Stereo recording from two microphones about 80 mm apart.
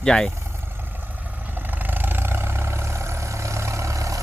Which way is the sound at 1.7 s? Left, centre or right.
Right.